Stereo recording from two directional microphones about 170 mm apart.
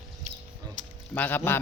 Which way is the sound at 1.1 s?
10° left (ahead or behind).